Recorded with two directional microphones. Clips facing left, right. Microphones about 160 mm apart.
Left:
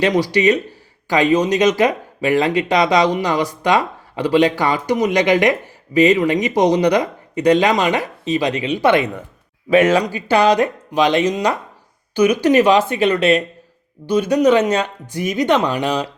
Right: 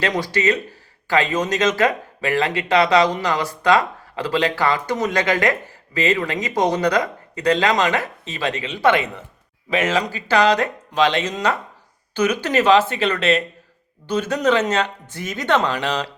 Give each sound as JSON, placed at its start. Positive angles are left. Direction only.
{"t": 0.0, "sound": "speech", "side_deg": 15}